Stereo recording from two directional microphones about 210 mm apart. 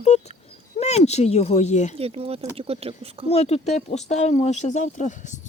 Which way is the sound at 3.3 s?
30° left (ahead or behind).